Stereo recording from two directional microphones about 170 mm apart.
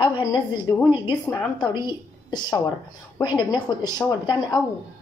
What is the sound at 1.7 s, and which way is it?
A woman's voice, 25° left (ahead or behind).